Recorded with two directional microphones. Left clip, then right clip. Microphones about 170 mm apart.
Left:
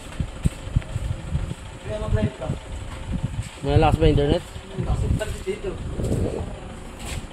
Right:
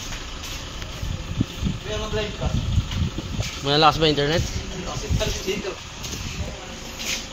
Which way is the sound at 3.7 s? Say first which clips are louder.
Right 2 dB; 25° left (ahead or behind).